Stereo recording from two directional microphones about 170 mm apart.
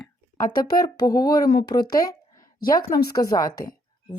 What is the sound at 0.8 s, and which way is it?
Speech, 20° left (ahead or behind).